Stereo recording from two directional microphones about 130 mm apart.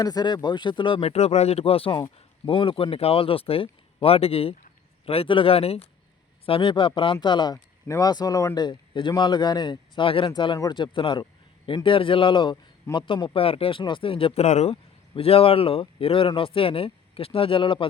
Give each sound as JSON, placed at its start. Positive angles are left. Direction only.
{"t": 0.0, "sound": "speech", "side_deg": 30}
{"t": 14.4, "sound": "speech", "side_deg": 60}